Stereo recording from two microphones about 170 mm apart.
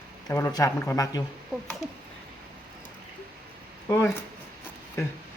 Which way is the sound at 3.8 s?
15° left (ahead or behind).